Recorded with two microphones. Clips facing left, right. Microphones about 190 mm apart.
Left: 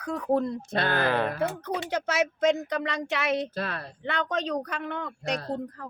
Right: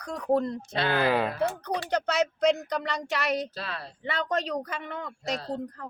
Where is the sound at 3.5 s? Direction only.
50° left (ahead or behind).